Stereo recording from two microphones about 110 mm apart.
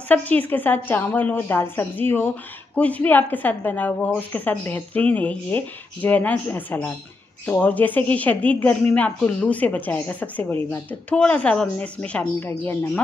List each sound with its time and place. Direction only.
0.1 s a woman's voice: 15° left (ahead or behind)